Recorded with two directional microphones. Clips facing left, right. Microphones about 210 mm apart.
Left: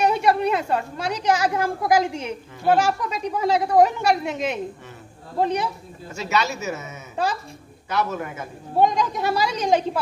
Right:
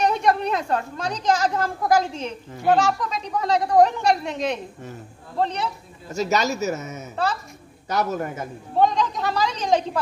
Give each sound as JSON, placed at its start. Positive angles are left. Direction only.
{"t": 0.0, "sound": "a woman's voice", "side_deg": 10}
{"t": 6.1, "sound": "speech", "side_deg": -40}
{"t": 7.2, "sound": "a woman's voice", "side_deg": 10}
{"t": 7.9, "sound": "speech", "side_deg": -40}
{"t": 8.7, "sound": "a woman's voice", "side_deg": 10}